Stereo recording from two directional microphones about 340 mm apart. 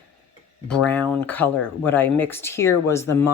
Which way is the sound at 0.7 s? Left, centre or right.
Centre.